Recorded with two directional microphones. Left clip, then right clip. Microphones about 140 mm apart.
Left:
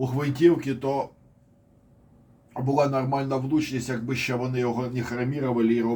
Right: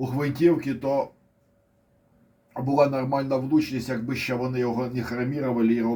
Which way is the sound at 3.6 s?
25° right (ahead or behind).